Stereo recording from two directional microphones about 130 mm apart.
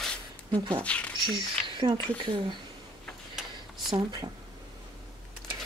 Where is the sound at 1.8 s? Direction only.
40° right (ahead or behind).